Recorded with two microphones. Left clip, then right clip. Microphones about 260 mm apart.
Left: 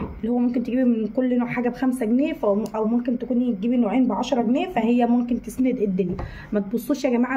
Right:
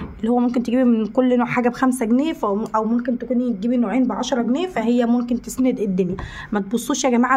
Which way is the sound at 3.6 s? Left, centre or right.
Right.